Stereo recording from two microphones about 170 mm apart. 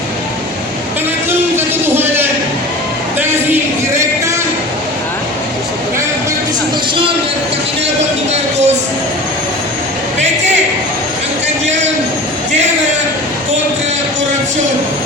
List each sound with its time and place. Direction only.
1.5 s music: 10° right (ahead or behind)
3.2 s a sound: 10° right (ahead or behind)
8.3 s music: 40° right (ahead or behind)